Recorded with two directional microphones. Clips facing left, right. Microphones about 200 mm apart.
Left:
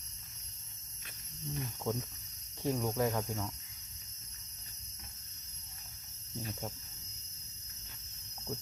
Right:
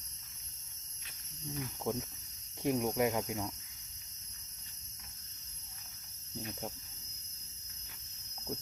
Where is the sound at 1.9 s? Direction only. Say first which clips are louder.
Even; 15° right (ahead or behind).